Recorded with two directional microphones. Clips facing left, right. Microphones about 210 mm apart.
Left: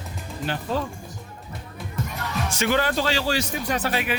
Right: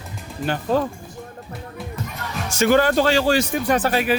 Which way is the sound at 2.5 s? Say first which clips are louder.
Right 7 dB; 45° right (ahead or behind).